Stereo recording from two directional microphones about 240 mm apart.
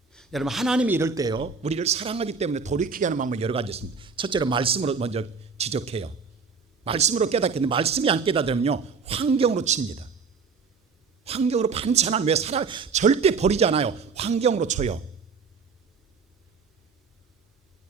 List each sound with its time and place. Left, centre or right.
0.1 s a man's voice: centre; by 10.1 s right
11.2 s a man's voice: right